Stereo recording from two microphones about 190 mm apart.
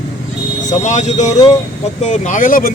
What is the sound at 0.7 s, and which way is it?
Speech, 35° left (ahead or behind).